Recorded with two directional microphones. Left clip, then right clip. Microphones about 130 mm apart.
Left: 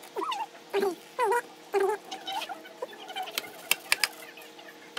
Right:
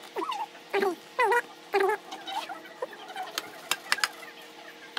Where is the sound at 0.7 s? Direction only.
15° right (ahead or behind).